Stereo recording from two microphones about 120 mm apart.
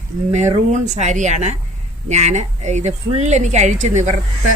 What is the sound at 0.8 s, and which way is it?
A woman's voice, 80° right.